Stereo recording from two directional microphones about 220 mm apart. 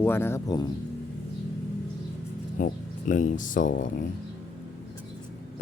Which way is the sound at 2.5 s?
35° left (ahead or behind).